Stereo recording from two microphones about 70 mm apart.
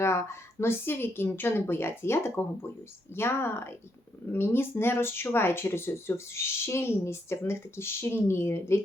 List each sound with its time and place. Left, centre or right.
0.0 s speech: left